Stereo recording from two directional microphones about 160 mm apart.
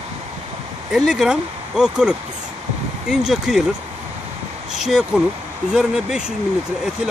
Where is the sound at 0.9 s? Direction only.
Centre (ahead or behind).